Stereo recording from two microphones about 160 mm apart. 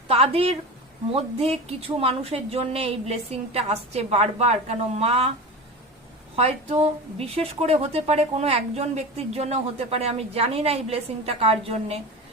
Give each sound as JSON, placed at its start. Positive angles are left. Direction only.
{"t": 0.1, "sound": "speech", "side_deg": -40}
{"t": 6.3, "sound": "speech", "side_deg": -40}